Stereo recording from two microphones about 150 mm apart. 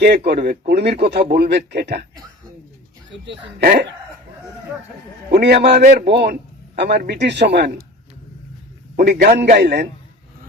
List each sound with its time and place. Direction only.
0.3 s a man's voice: 75° right (ahead or behind)
0.7 s a man's voice: 90° right
3.6 s a man's voice: 90° right
5.3 s a man's voice: 90° right
9.0 s a man's voice: 65° right (ahead or behind)